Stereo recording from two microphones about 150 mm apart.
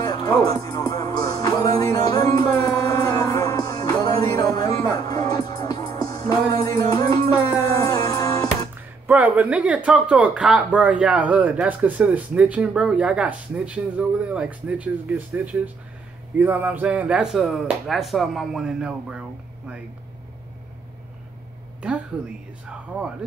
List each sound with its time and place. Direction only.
0.0 s music: 25° left (ahead or behind)
9.0 s speech: 10° right (ahead or behind)
22.7 s speech: 5° right (ahead or behind)